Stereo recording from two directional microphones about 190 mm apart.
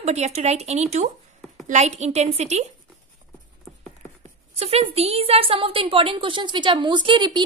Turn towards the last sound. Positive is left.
turn(degrees=-25)  # may be behind; listen again after turning